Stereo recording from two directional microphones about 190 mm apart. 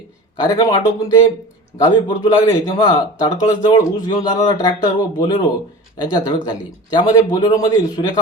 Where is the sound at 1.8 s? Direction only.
20° left (ahead or behind).